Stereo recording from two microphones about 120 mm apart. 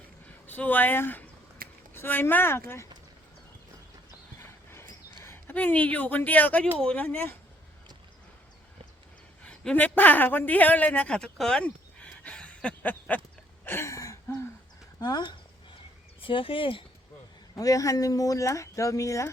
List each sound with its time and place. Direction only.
0.4 s speech: 15° left (ahead or behind)
4.4 s horse: 20° left (ahead or behind)
5.2 s speech: 20° left (ahead or behind)
9.4 s a man's voice: 10° left (ahead or behind)
13.7 s a sound: 20° left (ahead or behind)
15.0 s speech: 35° left (ahead or behind)
16.2 s speech: 45° left (ahead or behind)
17.5 s speech: 30° left (ahead or behind)